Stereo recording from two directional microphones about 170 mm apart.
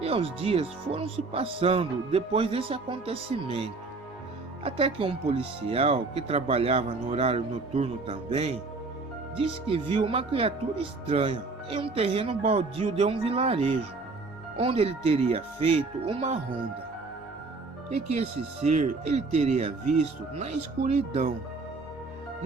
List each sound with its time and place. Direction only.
0.0 s speech: 35° right (ahead or behind)
17.9 s speech: 40° right (ahead or behind)